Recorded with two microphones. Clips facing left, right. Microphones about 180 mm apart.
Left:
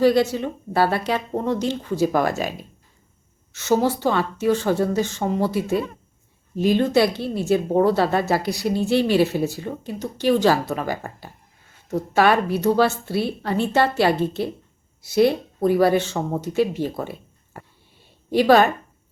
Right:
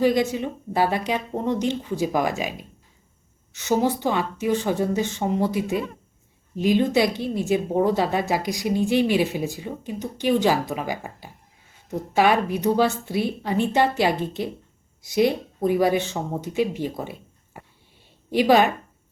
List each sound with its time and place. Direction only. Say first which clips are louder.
0.0 s a woman's voice: left 3 dB; 15° right (ahead or behind)